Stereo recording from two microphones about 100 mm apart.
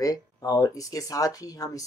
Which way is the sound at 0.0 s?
40° left (ahead or behind).